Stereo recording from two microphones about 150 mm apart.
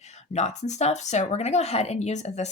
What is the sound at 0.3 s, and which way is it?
Speech, 45° left (ahead or behind).